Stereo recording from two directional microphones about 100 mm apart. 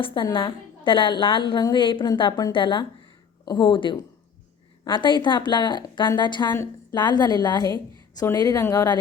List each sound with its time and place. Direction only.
0.0 s a woman's voice: 55° left (ahead or behind); by 9.0 s 40° left (ahead or behind)